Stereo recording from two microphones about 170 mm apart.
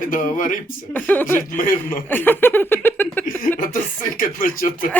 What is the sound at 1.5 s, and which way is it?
Speech, 55° left (ahead or behind).